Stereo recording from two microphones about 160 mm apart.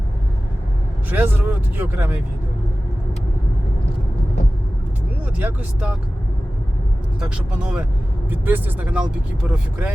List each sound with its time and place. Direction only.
1.1 s speech: 10° right (ahead or behind)
5.2 s speech: 10° right (ahead or behind)
7.2 s speech: 5° right (ahead or behind)